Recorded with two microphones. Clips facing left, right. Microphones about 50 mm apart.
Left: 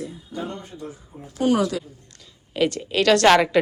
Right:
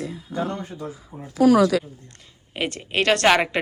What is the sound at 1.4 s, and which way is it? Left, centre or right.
Speech, right.